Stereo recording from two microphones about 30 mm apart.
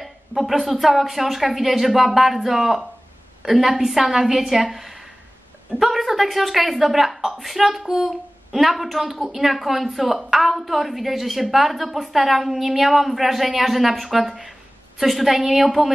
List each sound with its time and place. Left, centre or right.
0.0 s a sound: centre
0.7 s a woman's voice: centre
15.0 s a woman's voice: centre